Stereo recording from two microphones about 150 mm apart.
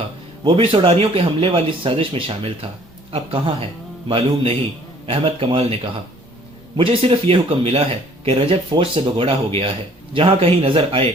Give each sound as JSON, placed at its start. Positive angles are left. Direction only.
{"t": 0.4, "sound": "speech", "side_deg": -35}